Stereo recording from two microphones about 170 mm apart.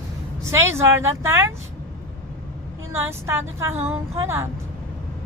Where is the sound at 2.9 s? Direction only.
15° right (ahead or behind).